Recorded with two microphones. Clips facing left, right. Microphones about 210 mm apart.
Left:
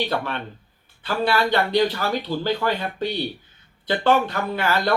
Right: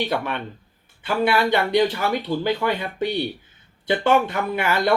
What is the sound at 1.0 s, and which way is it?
Speech, 20° right (ahead or behind).